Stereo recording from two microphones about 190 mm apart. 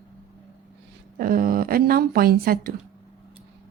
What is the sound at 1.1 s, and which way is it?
A woman's voice, 50° right (ahead or behind).